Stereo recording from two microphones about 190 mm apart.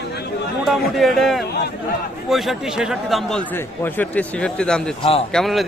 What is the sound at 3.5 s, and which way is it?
Speech, 10° left (ahead or behind).